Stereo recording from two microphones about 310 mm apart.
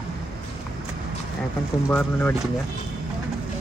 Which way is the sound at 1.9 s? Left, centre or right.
Centre.